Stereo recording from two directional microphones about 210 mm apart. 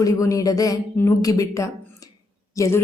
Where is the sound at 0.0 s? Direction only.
15° left (ahead or behind).